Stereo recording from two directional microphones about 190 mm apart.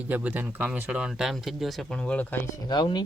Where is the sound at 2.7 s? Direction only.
20° left (ahead or behind).